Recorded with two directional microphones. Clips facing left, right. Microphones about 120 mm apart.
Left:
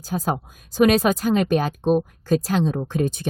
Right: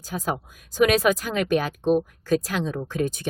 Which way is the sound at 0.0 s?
35° left (ahead or behind).